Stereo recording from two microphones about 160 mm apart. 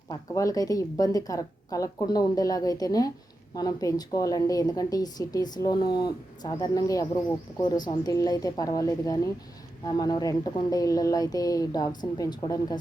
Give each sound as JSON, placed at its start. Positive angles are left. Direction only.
{"t": 0.1, "sound": "a woman's voice", "side_deg": 20}